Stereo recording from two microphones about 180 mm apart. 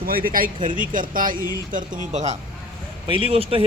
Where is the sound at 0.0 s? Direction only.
55° right (ahead or behind).